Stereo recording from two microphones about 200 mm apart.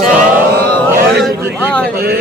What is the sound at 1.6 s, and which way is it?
Speech, 5° left (ahead or behind).